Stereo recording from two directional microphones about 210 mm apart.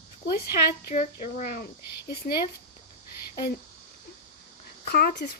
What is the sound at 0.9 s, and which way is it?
Speech, 35° left (ahead or behind).